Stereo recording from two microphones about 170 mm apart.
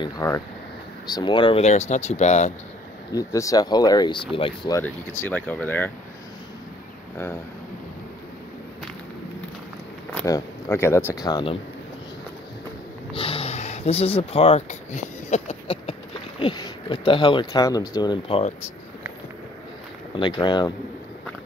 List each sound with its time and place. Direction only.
0.2 s speech: 15° left (ahead or behind)
1.0 s speech: 25° left (ahead or behind); by 2.5 s 40° left (ahead or behind)
3.1 s speech: 20° left (ahead or behind)
5.2 s speech: 10° left (ahead or behind)
10.2 s speech: 15° left (ahead or behind)
11.2 s speech: 25° left (ahead or behind)
13.1 s speech: 35° left (ahead or behind)
20.2 s speech: 25° left (ahead or behind)